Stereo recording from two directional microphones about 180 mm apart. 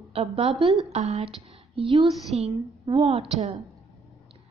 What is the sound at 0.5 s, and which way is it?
Speech, centre (ahead or behind).